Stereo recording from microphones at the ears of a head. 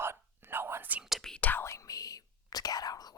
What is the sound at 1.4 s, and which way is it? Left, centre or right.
Whispering, left.